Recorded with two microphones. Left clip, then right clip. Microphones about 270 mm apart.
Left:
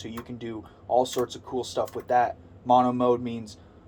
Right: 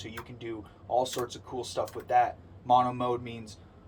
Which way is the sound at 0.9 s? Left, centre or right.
Left.